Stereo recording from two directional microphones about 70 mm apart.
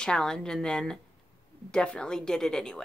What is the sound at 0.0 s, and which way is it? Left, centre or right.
A woman's voice, centre.